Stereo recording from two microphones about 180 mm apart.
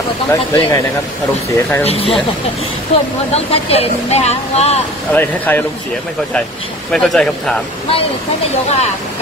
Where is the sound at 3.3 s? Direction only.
35° left (ahead or behind).